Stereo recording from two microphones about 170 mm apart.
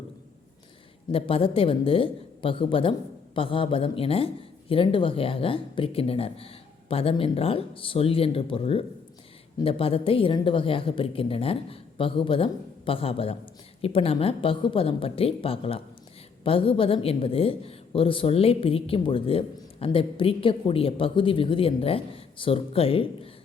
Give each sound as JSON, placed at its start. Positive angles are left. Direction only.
{"t": 1.1, "sound": "a woman's voice", "side_deg": 35}